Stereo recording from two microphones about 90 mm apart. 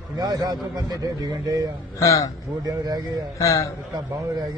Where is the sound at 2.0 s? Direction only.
35° left (ahead or behind).